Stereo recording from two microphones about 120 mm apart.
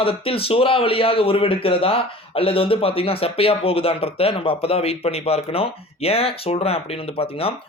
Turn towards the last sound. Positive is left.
turn(degrees=50)  # may be behind; listen again after turning